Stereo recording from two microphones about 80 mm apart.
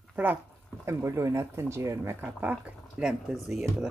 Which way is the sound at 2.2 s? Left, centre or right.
Right.